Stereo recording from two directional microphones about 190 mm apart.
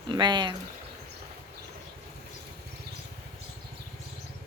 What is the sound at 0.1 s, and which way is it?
Speech, 25° right (ahead or behind).